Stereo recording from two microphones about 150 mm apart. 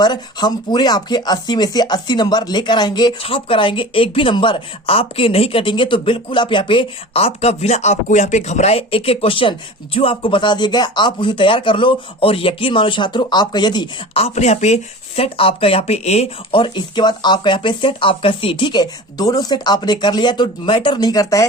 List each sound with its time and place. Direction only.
0.0 s speech: 30° left (ahead or behind)
14.2 s speech: 45° left (ahead or behind); by 21.4 s 20° left (ahead or behind)